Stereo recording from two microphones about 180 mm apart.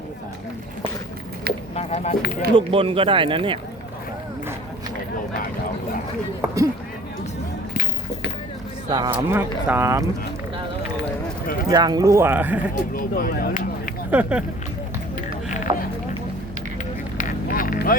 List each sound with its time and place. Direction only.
1.7 s speech: 35° left (ahead or behind)
2.3 s speech: 30° right (ahead or behind)
8.9 s speech: 20° right (ahead or behind)
11.7 s speech: 20° right (ahead or behind)
12.9 s speech: 50° left (ahead or behind)
14.1 s speech: 5° right (ahead or behind)
15.7 s a sound: 30° right (ahead or behind)
17.2 s vehicle: 50° left (ahead or behind)